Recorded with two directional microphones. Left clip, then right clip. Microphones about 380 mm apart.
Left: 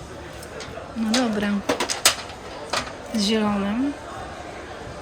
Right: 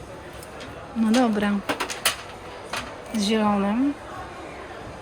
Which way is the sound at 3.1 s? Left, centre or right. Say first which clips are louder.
Even; centre.